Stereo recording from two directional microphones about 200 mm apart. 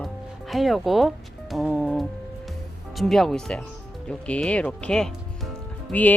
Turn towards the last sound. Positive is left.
turn(degrees=5)  # may be behind; listen again after turning